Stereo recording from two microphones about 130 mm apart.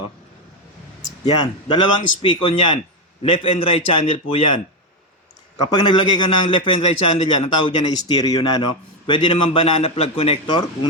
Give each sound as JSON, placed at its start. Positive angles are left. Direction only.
{"t": 1.2, "sound": "a man's voice", "side_deg": 35}